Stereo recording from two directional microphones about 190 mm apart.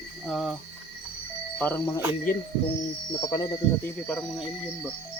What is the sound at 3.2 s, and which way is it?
Speech, 20° left (ahead or behind).